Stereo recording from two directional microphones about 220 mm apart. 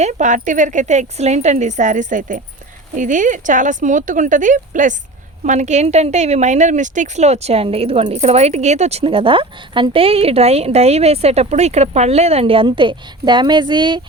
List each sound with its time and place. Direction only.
0.0 s speech: 35° right (ahead or behind)